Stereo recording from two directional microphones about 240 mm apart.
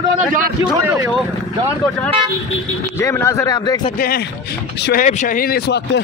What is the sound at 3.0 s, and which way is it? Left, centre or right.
Speech, centre.